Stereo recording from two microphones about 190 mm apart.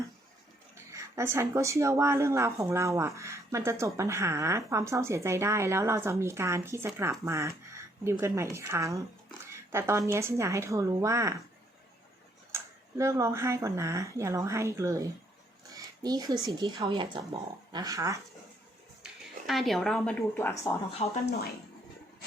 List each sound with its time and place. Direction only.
0.9 s speech: 15° right (ahead or behind)
12.5 s speech: 15° right (ahead or behind)
16.0 s speech: 20° right (ahead or behind)
19.5 s a woman's voice: centre (ahead or behind)
21.2 s speech: 55° left (ahead or behind)